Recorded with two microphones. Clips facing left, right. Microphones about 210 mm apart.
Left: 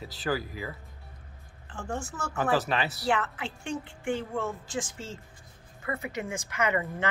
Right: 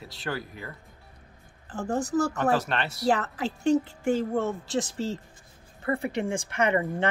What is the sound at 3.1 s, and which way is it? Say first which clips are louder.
A woman's voice: right 6 dB; 40° right (ahead or behind).